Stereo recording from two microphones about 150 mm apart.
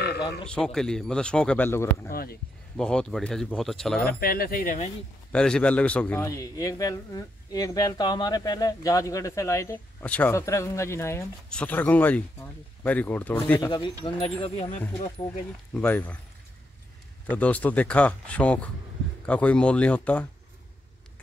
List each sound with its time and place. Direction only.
0.5 s speech: 5° left (ahead or behind)
2.0 s speech: 85° left
2.8 s speech: 5° left (ahead or behind)
4.0 s speech: 80° left; by 4.9 s 55° left (ahead or behind)
5.3 s speech: 5° left (ahead or behind)
6.2 s speech: 25° left (ahead or behind)
13.6 s speech: 30° left (ahead or behind)
15.7 s speech: 10° left (ahead or behind)
17.3 s speech: 10° left (ahead or behind)